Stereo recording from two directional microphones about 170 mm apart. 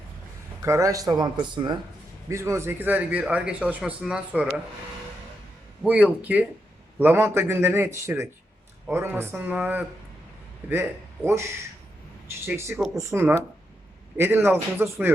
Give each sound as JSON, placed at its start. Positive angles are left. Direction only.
{"t": 0.6, "sound": "speech", "side_deg": -20}
{"t": 2.3, "sound": "a man's voice", "side_deg": -15}
{"t": 5.8, "sound": "a man's voice", "side_deg": -5}